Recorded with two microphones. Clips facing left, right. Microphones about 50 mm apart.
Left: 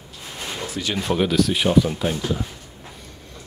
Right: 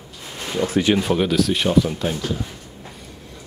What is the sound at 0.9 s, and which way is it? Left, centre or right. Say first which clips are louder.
Speech: right 1 dB; centre.